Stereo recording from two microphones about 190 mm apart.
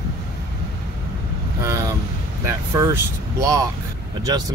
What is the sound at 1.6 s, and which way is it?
Vehicle, 15° right (ahead or behind).